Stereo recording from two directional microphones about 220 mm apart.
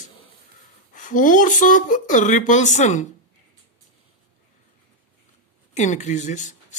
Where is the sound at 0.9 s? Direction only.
35° left (ahead or behind).